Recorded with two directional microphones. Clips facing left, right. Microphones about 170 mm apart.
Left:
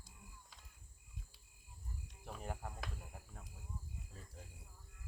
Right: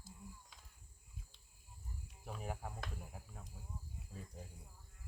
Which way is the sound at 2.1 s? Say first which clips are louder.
Right 1 dB; 5° right (ahead or behind).